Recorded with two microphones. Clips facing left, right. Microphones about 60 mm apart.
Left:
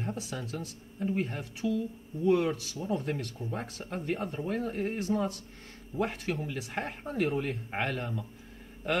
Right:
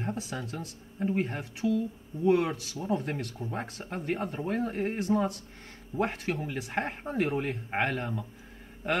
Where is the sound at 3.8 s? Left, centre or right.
Centre.